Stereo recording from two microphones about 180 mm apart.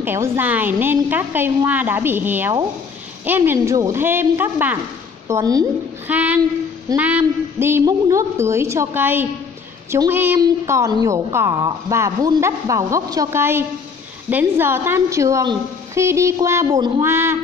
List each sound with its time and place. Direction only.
0.0 s a woman's voice: 10° right (ahead or behind)
6.0 s a woman's voice: 10° right (ahead or behind)